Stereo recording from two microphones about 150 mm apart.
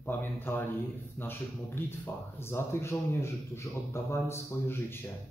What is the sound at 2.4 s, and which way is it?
A man's voice, 15° left (ahead or behind).